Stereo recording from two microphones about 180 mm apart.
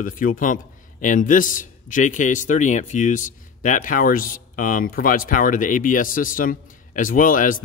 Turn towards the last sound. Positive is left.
turn(degrees=50)  # may be behind; listen again after turning